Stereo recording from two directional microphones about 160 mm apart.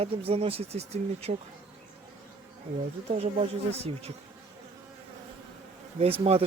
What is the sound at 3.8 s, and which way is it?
Speech, 40° right (ahead or behind).